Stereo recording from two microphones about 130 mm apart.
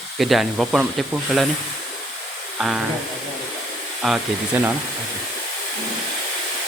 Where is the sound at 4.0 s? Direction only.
10° right (ahead or behind).